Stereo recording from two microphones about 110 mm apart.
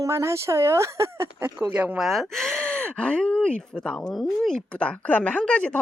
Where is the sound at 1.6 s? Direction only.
10° right (ahead or behind).